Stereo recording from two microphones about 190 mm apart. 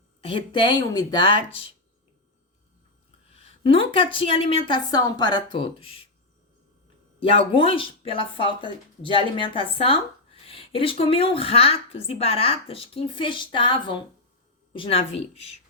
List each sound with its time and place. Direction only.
0.2 s a woman's voice: 30° left (ahead or behind)
3.3 s a woman's voice: 30° left (ahead or behind)
7.2 s a woman's voice: 30° left (ahead or behind)